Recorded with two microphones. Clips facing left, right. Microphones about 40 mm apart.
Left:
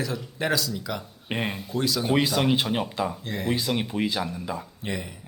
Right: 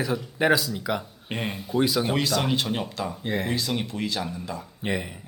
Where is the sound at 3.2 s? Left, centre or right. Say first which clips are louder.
Right 4 dB; centre.